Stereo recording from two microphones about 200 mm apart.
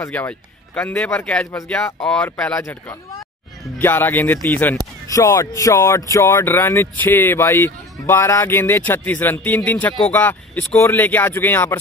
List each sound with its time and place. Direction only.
0.0 s speech: 10° left (ahead or behind)